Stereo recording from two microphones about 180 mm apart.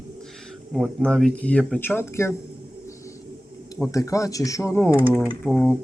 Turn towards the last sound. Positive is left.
turn(degrees=-5)  # may be behind; listen again after turning